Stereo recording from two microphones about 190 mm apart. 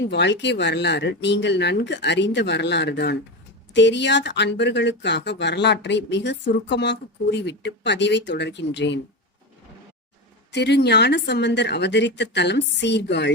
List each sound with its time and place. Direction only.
0.1 s speech: 65° left (ahead or behind)
10.5 s speech: 60° left (ahead or behind)